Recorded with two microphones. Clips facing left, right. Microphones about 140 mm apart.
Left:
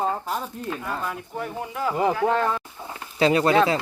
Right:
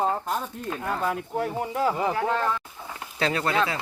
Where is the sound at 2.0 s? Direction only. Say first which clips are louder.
Left 4 dB; 30° left (ahead or behind).